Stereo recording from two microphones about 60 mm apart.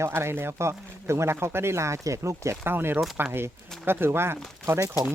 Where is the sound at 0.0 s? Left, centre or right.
Right.